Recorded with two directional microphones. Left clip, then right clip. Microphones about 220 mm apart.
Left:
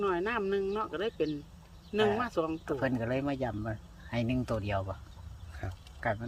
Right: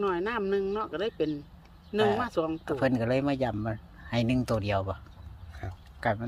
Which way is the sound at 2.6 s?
40° right (ahead or behind).